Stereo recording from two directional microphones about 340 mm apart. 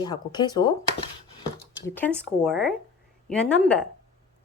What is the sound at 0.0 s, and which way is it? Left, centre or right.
Speech, centre.